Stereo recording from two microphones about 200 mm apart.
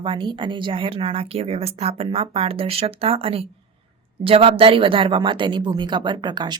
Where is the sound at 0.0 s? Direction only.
25° right (ahead or behind).